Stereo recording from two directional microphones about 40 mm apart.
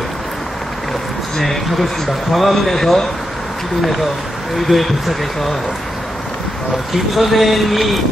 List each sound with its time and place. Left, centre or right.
1.4 s a man's voice: centre
4.6 s a man's voice: centre
6.9 s a man's voice: centre